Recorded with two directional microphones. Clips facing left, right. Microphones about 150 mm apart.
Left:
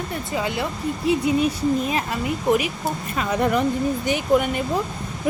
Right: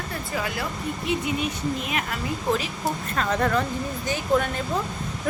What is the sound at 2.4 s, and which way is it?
Speech, 15° left (ahead or behind).